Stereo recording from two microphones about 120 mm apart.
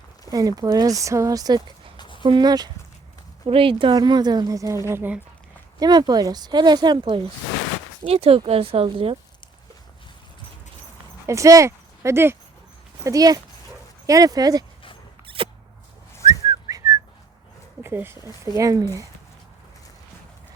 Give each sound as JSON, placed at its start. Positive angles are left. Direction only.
{"t": 0.3, "sound": "speech", "side_deg": -30}
{"t": 2.0, "sound": "a sound", "side_deg": 45}
{"t": 2.2, "sound": "a woman's voice", "side_deg": -40}
{"t": 3.4, "sound": "a woman's voice", "side_deg": -50}
{"t": 5.8, "sound": "a woman's voice", "side_deg": -35}
{"t": 11.3, "sound": "speech", "side_deg": -25}
{"t": 13.1, "sound": "a woman's voice", "side_deg": -30}
{"t": 15.3, "sound": "a sound", "side_deg": -45}
{"t": 16.2, "sound": "whistling", "side_deg": -30}
{"t": 17.8, "sound": "speech", "side_deg": -20}